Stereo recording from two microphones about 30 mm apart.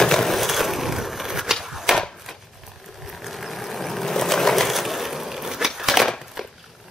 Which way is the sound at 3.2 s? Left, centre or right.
Centre.